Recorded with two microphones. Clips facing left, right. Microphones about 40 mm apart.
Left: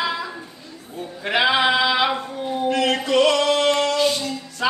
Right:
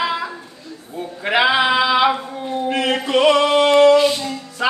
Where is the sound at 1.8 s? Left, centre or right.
Centre.